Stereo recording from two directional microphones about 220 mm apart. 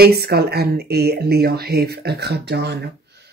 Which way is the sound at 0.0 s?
45° right (ahead or behind).